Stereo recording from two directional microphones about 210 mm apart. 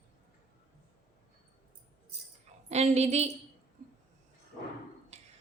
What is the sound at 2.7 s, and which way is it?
Speech, 30° right (ahead or behind).